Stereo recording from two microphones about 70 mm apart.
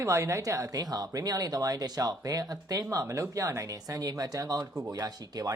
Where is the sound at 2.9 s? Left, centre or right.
Right.